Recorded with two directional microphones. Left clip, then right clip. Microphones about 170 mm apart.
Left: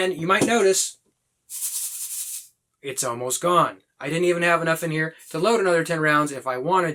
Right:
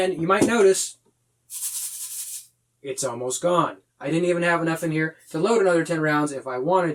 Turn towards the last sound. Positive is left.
turn(degrees=20)  # may be behind; listen again after turning